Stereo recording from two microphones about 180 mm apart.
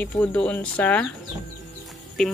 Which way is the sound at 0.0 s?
10° left (ahead or behind).